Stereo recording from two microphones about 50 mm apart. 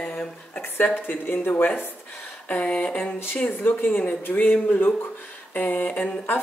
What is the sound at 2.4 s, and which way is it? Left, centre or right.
Speech, left.